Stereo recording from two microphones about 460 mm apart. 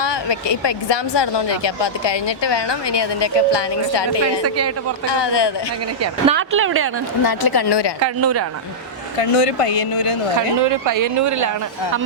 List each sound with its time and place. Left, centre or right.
0.0 s speech: left
4.4 s speech: right
5.0 s speech: left
6.2 s speech: right
7.3 s speech: left
8.0 s speech: right
9.3 s speech: left
10.6 s speech: right